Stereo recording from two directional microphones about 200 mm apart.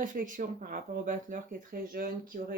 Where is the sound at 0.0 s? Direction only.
40° right (ahead or behind).